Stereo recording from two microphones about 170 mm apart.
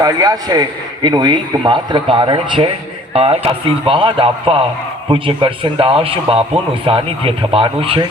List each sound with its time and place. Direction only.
0.0 s a man's voice: 20° right (ahead or behind)